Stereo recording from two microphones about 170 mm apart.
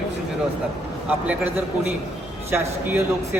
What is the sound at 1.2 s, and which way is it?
A man's voice, 10° right (ahead or behind).